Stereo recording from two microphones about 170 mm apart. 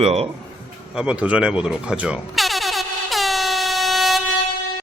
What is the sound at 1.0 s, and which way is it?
Speech, 5° right (ahead or behind).